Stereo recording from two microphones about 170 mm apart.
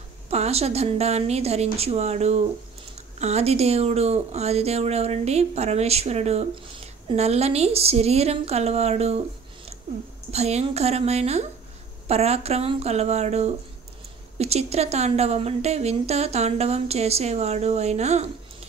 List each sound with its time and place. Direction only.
0.3 s a woman's voice: 40° right (ahead or behind)
10.3 s a woman's voice: 40° right (ahead or behind)